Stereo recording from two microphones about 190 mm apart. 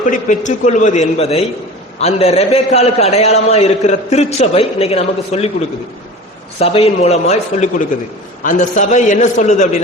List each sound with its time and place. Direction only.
0.0 s a man's voice: 40° left (ahead or behind)
6.6 s a man's voice: 30° left (ahead or behind)